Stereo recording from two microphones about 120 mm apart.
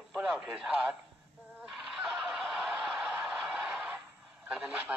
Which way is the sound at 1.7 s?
Centre (ahead or behind).